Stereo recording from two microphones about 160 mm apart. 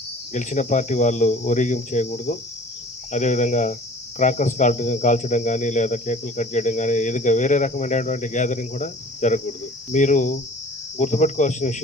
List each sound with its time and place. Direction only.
0.3 s speech: 50° left (ahead or behind)